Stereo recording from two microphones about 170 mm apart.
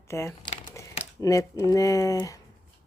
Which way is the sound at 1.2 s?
20° left (ahead or behind).